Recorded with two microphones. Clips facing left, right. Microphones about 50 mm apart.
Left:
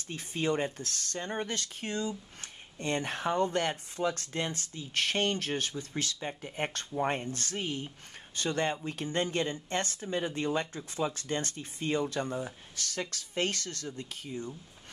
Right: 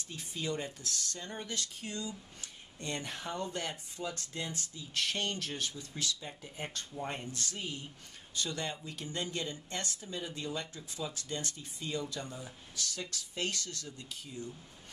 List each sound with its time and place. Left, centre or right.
0.1 s speech: left